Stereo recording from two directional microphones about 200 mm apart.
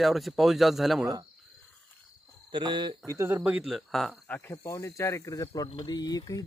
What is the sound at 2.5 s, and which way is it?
Speech, 25° right (ahead or behind).